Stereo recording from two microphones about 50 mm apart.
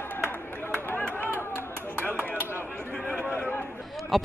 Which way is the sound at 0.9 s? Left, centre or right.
Left.